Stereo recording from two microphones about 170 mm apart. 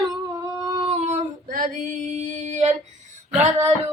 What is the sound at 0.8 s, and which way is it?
Female singing, 40° right (ahead or behind).